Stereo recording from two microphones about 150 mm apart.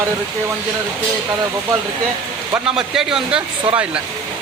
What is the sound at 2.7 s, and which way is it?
Speech, 5° right (ahead or behind).